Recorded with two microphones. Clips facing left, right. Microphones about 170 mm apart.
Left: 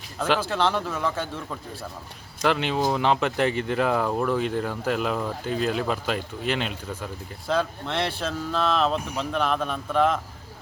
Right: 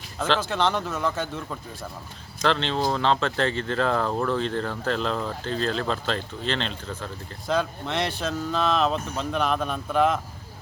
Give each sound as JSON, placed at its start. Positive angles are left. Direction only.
{"t": 0.2, "sound": "a man's voice", "side_deg": 10}
{"t": 2.4, "sound": "a man's voice", "side_deg": 10}